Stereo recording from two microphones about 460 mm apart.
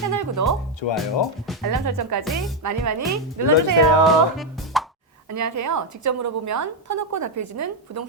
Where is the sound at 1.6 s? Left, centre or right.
Right.